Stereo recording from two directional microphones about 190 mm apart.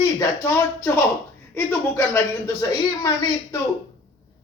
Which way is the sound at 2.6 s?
15° left (ahead or behind).